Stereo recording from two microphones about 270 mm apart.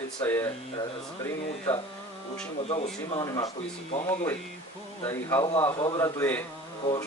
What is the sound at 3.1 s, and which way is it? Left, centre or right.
A man's voice, centre.